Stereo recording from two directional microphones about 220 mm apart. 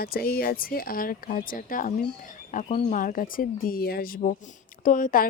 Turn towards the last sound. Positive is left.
turn(degrees=40)  # may be behind; listen again after turning